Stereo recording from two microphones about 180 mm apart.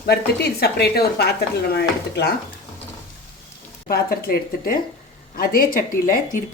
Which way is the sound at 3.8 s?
55° left (ahead or behind).